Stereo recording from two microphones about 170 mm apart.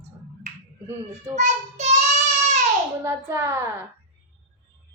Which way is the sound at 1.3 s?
40° right (ahead or behind).